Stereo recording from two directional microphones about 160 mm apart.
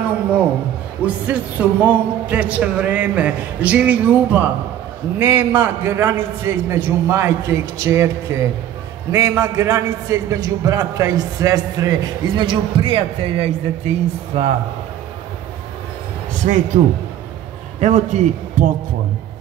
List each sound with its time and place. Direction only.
1.0 s a man's voice: 10° right (ahead or behind); by 14.5 s 40° right (ahead or behind)
16.3 s a man's voice: 50° right (ahead or behind)